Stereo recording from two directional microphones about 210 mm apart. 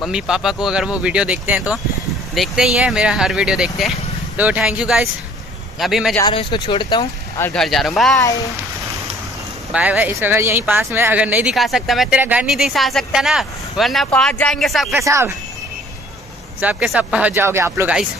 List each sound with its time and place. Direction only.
0.0 s speech: 5° right (ahead or behind)
6.1 s speech: 20° left (ahead or behind)
7.3 s speech: 5° left (ahead or behind)
9.7 s speech: 5° right (ahead or behind)
15.0 s speech: 15° right (ahead or behind)
16.6 s speech: 5° right (ahead or behind)